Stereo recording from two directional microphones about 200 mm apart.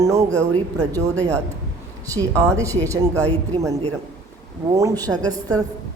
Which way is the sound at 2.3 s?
15° right (ahead or behind).